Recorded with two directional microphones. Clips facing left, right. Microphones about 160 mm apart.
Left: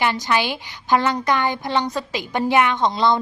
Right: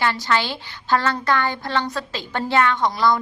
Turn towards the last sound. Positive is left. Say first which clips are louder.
# left 1 dB
turn(degrees=25)  # may be behind; listen again after turning